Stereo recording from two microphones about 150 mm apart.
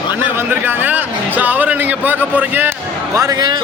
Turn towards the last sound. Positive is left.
turn(degrees=-25)  # may be behind; listen again after turning